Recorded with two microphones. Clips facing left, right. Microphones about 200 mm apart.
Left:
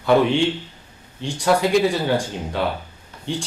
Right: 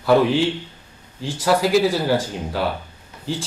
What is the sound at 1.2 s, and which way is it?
Speech, 5° right (ahead or behind).